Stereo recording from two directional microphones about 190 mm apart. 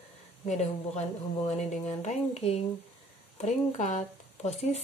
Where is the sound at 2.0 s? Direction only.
35° left (ahead or behind).